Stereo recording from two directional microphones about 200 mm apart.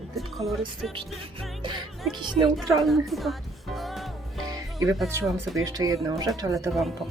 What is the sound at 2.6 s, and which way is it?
Speech, 15° right (ahead or behind).